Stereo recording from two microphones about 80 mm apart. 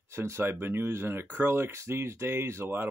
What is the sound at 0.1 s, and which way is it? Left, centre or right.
Speech, right.